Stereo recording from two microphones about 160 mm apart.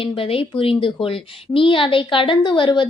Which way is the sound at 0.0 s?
35° left (ahead or behind).